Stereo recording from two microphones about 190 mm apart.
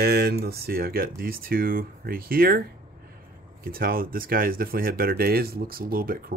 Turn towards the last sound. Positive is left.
turn(degrees=-50)  # may be behind; listen again after turning